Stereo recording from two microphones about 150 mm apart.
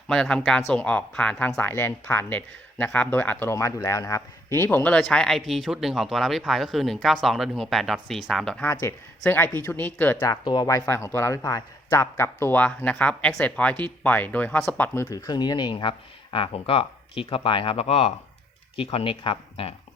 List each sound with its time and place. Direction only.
0.1 s speech: 5° left (ahead or behind)
8.6 s speech: 15° left (ahead or behind)
10.2 s speech: 30° left (ahead or behind); by 14.8 s 5° left (ahead or behind)
15.0 s speech: 25° left (ahead or behind)